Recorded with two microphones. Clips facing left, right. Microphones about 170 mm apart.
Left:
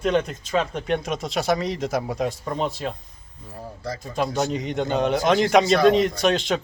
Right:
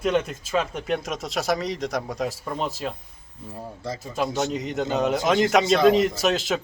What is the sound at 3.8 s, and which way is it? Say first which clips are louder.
Speech: left 1 dB; 25° right (ahead or behind).